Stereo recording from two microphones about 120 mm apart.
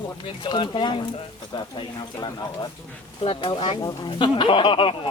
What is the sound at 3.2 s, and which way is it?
Speech, 45° left (ahead or behind).